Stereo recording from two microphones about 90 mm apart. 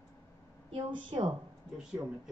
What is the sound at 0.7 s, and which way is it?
Speech, 70° right (ahead or behind).